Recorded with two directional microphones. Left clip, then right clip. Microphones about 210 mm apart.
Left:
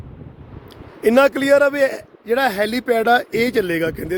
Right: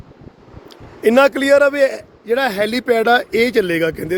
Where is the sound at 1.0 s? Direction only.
Centre (ahead or behind).